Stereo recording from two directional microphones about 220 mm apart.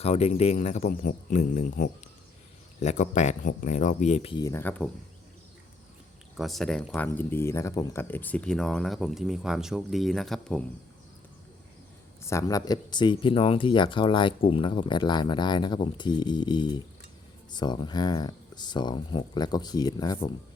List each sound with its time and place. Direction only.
0.0 s speech: 30° left (ahead or behind); by 4.9 s 5° left (ahead or behind)
6.3 s speech: centre (ahead or behind)
12.2 s speech: 15° left (ahead or behind)